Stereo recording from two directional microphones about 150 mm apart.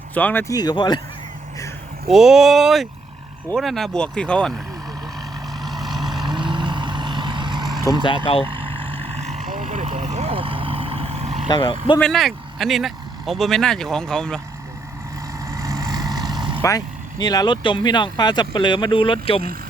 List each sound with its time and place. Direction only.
0.1 s speech: 10° left (ahead or behind)
0.5 s speech: 25° left (ahead or behind)
2.0 s speech: centre (ahead or behind)
5.6 s vehicle: centre (ahead or behind)
6.2 s vehicle: 30° right (ahead or behind)
11.4 s speech: 30° left (ahead or behind)
11.9 s speech: 5° left (ahead or behind)
15.4 s vehicle: 20° right (ahead or behind)
16.6 s speech: 25° left (ahead or behind)